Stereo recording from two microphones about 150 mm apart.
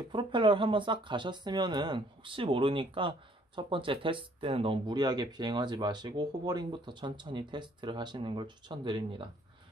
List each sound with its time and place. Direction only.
0.1 s speech: 30° right (ahead or behind)